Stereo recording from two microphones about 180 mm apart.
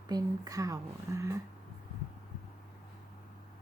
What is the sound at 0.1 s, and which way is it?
A woman's voice, 20° right (ahead or behind).